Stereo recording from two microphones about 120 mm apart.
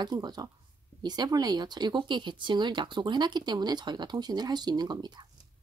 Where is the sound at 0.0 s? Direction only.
35° right (ahead or behind).